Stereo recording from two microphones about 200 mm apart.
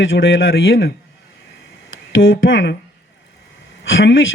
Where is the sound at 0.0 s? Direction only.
70° left (ahead or behind).